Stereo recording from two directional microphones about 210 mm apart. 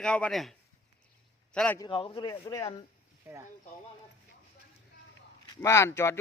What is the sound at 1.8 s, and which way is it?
Speech, 25° left (ahead or behind).